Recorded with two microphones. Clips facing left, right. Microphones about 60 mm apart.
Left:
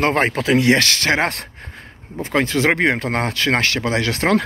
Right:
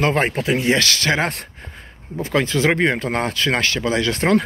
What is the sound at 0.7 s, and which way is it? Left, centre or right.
Speech, left.